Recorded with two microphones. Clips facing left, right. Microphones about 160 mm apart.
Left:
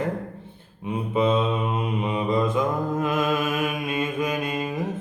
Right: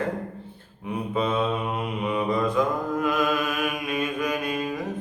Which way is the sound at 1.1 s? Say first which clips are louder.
Left 3 dB; 20° left (ahead or behind).